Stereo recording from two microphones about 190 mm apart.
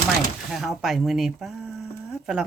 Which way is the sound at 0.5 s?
Centre (ahead or behind).